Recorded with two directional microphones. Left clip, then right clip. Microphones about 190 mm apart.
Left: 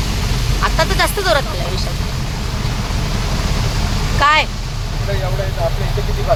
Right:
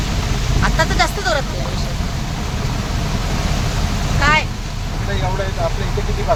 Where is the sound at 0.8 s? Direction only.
5° left (ahead or behind).